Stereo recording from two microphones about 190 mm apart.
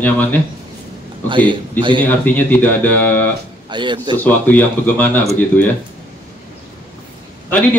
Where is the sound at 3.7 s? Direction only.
25° right (ahead or behind).